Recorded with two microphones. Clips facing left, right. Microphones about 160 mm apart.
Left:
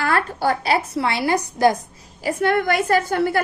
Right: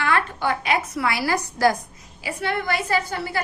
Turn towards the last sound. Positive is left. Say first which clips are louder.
# left 6 dB
turn(degrees=55)  # may be behind; listen again after turning